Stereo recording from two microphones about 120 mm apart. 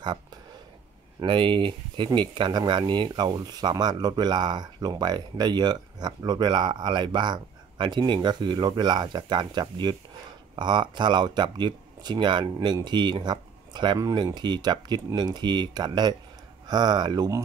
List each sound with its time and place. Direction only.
1.2 s speech: 45° right (ahead or behind)